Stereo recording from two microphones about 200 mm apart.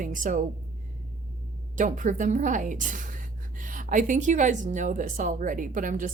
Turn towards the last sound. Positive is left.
turn(degrees=-40)  # may be behind; listen again after turning